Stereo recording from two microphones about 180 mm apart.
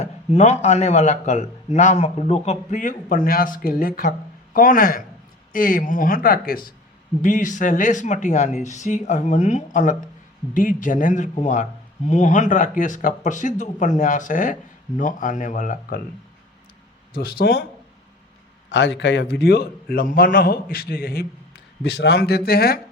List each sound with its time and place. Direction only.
0.0 s a man's voice: 40° left (ahead or behind)
17.2 s a man's voice: 60° left (ahead or behind)
18.7 s a man's voice: 80° left; by 21.2 s 55° left (ahead or behind)
21.8 s a man's voice: 70° left (ahead or behind)